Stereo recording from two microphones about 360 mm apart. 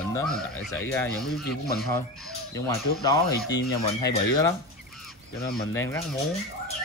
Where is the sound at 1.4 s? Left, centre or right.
Left.